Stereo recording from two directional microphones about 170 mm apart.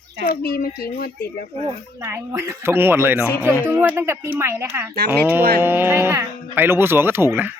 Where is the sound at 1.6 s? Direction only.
15° right (ahead or behind).